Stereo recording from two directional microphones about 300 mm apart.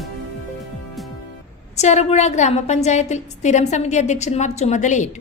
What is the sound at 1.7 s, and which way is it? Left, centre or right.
A woman's voice, left.